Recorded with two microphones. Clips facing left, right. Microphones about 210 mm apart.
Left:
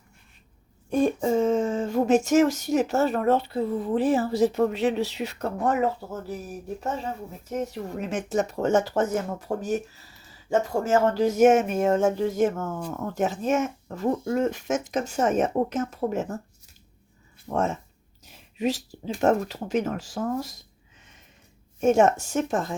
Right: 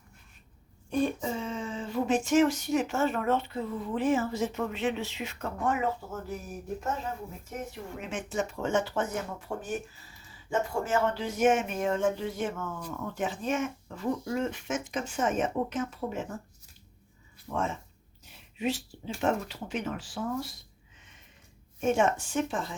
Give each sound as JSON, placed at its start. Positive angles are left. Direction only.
{"t": 0.9, "sound": "speech", "side_deg": 45}
{"t": 7.5, "sound": "speech", "side_deg": 40}
{"t": 17.5, "sound": "speech", "side_deg": 40}
{"t": 18.3, "sound": "a sound", "side_deg": 40}
{"t": 19.2, "sound": "speech", "side_deg": 40}
{"t": 21.8, "sound": "speech", "side_deg": 40}